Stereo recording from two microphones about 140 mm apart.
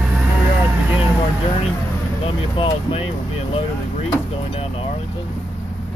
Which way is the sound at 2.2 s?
40° left (ahead or behind).